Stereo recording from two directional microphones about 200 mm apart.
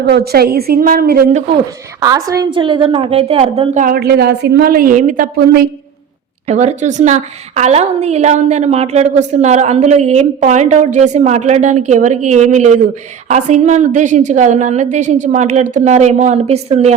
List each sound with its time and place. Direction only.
0.0 s a woman's voice: 55° right (ahead or behind)
2.0 s a woman's voice: 15° right (ahead or behind)
3.8 s a woman's voice: 50° right (ahead or behind); by 16.9 s 30° right (ahead or behind)